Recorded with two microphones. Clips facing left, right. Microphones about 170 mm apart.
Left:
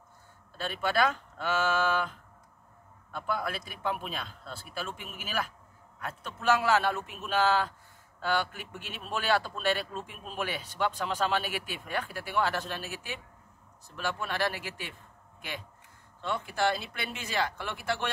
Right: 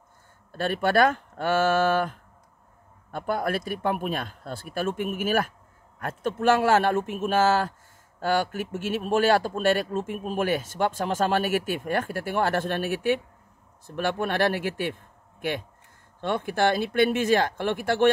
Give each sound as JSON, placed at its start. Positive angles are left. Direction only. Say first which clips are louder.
{"t": 0.5, "sound": "speech", "louder": "right 8 dB", "side_deg": -55}
{"t": 16.2, "sound": "speech", "louder": "right 6 dB", "side_deg": -55}